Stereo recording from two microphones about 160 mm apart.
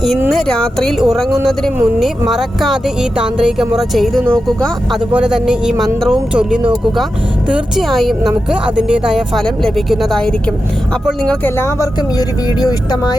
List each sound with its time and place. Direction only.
0.3 s speech: centre (ahead or behind)
11.4 s speech: 15° left (ahead or behind)